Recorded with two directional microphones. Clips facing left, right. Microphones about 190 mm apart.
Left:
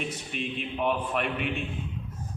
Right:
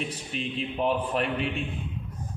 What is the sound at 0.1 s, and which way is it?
A man's voice, 35° right (ahead or behind).